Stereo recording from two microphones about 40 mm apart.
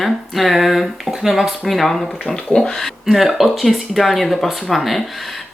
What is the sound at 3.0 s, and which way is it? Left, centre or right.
Speech, centre.